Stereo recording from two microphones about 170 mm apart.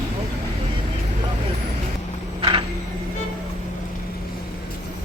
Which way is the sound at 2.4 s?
30° right (ahead or behind).